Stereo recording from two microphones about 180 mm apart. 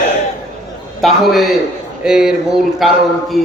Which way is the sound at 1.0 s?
Centre (ahead or behind).